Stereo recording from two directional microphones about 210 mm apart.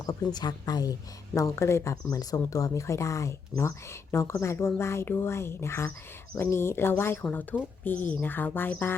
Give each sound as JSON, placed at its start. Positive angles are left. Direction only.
{"t": 0.3, "sound": "a woman's voice", "side_deg": 20}